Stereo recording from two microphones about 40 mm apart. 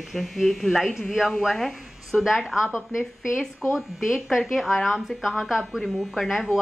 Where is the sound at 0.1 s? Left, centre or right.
Centre.